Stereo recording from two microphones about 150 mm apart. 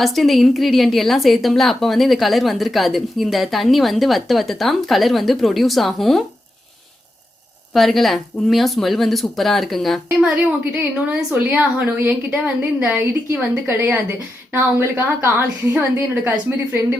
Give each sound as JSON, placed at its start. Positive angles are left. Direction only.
{"t": 0.0, "sound": "a woman's voice", "side_deg": 0}
{"t": 7.7, "sound": "a woman's voice", "side_deg": 0}
{"t": 10.7, "sound": "a woman's voice", "side_deg": -10}